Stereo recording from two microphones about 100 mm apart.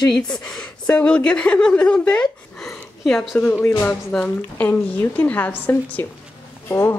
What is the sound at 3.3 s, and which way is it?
A woman's voice, 20° left (ahead or behind).